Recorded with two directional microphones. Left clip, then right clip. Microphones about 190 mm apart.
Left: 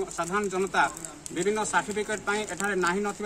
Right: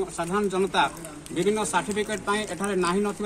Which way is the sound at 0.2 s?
5° left (ahead or behind).